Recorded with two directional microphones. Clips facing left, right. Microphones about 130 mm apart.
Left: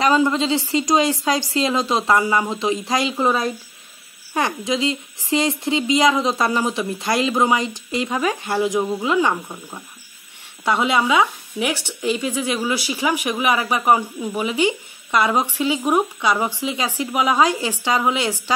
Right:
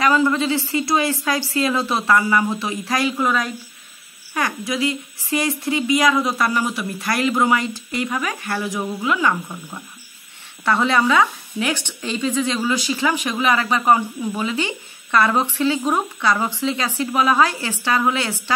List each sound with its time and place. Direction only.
0.0 s speech: 20° left (ahead or behind)